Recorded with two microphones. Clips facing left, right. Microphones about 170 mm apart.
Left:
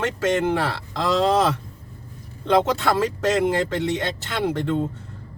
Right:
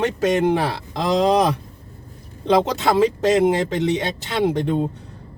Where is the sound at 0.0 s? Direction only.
15° right (ahead or behind).